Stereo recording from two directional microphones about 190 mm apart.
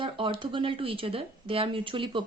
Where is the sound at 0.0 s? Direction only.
25° right (ahead or behind).